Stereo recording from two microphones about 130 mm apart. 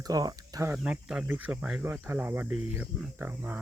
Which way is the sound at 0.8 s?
10° right (ahead or behind).